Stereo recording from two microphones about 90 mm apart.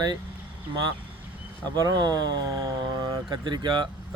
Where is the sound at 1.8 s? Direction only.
45° right (ahead or behind).